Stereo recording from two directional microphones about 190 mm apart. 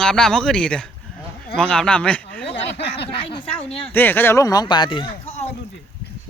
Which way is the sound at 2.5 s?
65° left (ahead or behind).